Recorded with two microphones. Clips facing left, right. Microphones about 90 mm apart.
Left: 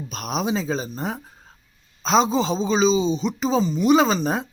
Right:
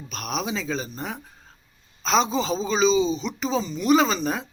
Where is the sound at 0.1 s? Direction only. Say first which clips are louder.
Left 3 dB; 35° left (ahead or behind).